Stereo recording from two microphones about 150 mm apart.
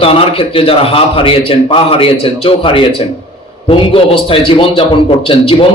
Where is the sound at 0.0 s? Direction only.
40° left (ahead or behind).